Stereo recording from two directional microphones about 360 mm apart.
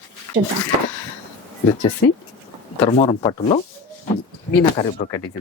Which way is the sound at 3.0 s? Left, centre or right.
Centre.